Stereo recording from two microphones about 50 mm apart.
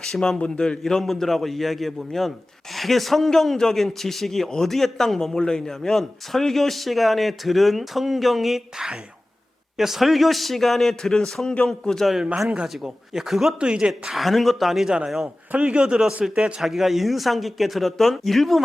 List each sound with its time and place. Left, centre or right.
0.0 s a man's voice: centre
0.3 s a man's voice: left
0.8 s a man's voice: centre
12.6 s speech: centre
13.6 s speech: centre
14.2 s speech: centre
15.5 s speech: right
16.6 s speech: centre